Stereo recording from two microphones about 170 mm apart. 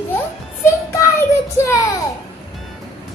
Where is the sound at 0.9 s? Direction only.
15° left (ahead or behind).